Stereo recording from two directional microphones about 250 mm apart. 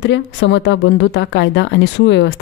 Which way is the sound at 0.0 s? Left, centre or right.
Left.